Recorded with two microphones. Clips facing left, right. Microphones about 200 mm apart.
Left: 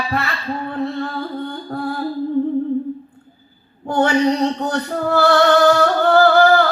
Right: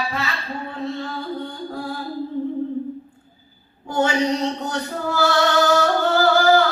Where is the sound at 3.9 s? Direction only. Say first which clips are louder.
Left 4 dB; 60° left (ahead or behind).